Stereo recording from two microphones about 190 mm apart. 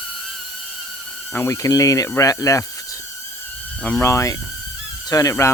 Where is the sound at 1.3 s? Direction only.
15° left (ahead or behind).